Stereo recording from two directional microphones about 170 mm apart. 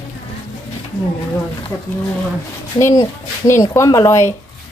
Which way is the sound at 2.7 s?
20° left (ahead or behind).